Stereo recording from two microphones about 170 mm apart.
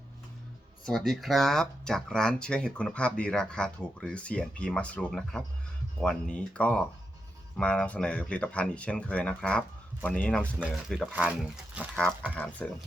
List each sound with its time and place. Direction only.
0.9 s speech: centre (ahead or behind)
12.4 s speech: 10° left (ahead or behind)